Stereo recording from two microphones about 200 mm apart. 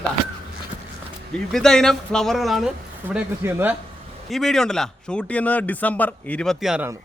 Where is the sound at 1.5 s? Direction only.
Centre (ahead or behind).